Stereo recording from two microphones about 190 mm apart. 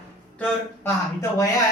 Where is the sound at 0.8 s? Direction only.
15° left (ahead or behind).